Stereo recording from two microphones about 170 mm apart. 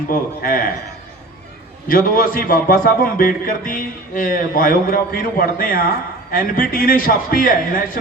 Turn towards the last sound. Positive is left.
turn(degrees=55)  # may be behind; listen again after turning